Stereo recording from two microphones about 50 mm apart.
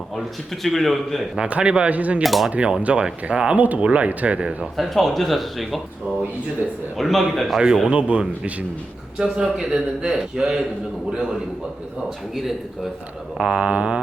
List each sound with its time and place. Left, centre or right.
0.2 s speech: centre
1.4 s speech: right
2.2 s speech: centre
2.5 s speech: right
3.6 s speech: right
4.6 s speech: centre
6.9 s speech: centre
7.9 s speech: right
9.1 s a man's voice: centre
12.3 s speech: centre
13.3 s speech: centre